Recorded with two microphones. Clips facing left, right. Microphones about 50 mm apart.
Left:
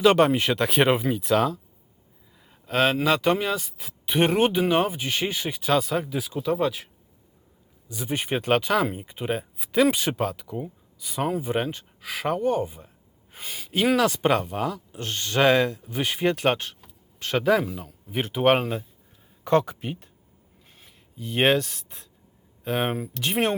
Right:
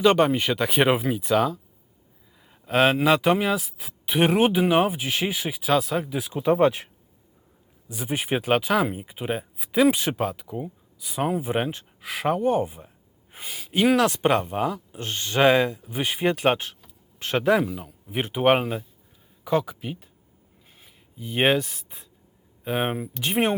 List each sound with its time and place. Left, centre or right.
0.0 s speech: centre
2.6 s speech: centre
6.4 s speech: right
7.9 s speech: centre
8.2 s speech: centre
12.5 s speech: centre
20.8 s speech: centre